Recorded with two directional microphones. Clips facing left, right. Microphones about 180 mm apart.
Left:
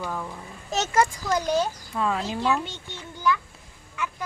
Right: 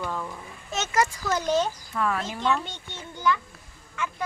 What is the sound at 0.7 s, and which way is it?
Speech, 35° left (ahead or behind).